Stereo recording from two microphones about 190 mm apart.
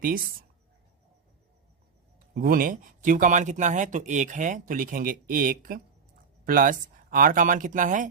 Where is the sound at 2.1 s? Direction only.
50° right (ahead or behind).